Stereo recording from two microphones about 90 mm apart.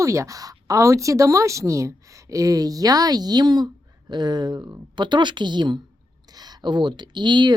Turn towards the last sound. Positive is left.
turn(degrees=-55)  # may be behind; listen again after turning